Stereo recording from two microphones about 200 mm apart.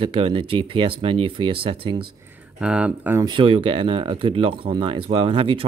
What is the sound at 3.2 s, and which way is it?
Speech, 25° right (ahead or behind).